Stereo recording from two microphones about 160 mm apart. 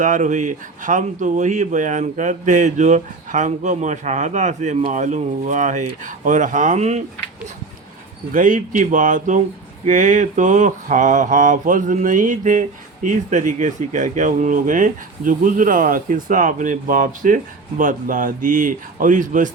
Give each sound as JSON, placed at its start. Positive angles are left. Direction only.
{"t": 0.0, "sound": "mantra", "side_deg": -50}
{"t": 8.3, "sound": "mantra", "side_deg": -55}